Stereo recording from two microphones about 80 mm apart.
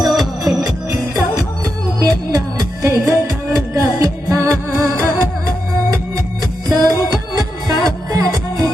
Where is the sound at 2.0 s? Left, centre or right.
Right.